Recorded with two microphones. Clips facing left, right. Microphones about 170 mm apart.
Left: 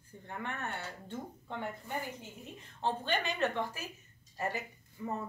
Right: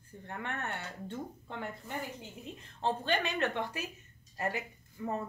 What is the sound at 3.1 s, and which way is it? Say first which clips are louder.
Speech: even; 65° right (ahead or behind).